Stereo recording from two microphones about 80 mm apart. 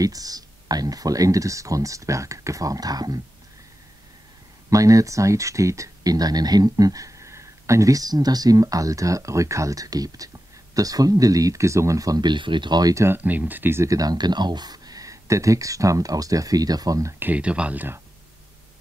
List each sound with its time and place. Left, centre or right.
0.0 s speech: right
4.6 s speech: right
12.2 s speech: right
12.9 s speech: right
13.2 s speech: right
13.8 s speech: right
17.2 s speech: centre